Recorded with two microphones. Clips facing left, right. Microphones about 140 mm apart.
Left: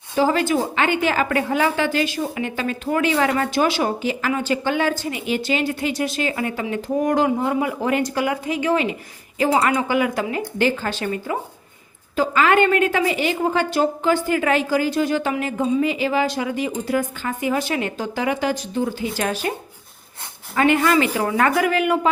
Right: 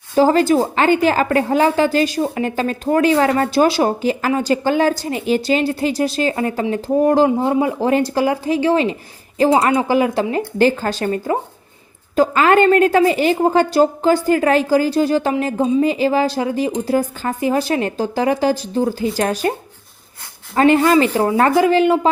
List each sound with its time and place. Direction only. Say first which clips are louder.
0.2 s a woman's voice: right 6 dB; 40° right (ahead or behind)
20.6 s a woman's voice: right 5 dB; 35° right (ahead or behind)